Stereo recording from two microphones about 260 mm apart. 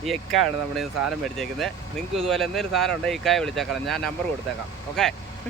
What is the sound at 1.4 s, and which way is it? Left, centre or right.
Speech, centre.